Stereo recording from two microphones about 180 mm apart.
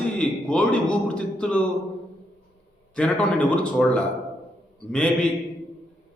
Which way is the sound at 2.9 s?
5° left (ahead or behind).